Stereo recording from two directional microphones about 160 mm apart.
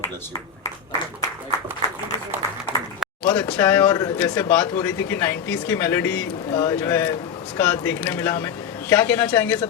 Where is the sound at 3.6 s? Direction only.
15° left (ahead or behind).